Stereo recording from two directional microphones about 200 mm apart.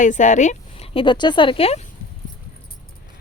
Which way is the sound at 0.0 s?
40° left (ahead or behind).